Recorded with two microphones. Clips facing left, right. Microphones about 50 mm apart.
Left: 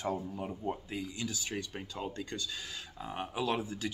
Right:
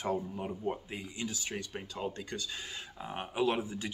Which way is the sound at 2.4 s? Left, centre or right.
Right.